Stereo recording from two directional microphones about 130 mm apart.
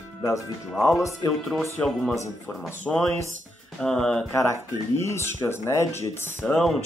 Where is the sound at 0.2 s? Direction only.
20° left (ahead or behind).